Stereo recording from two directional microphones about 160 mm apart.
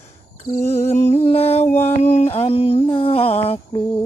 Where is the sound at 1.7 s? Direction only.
15° left (ahead or behind).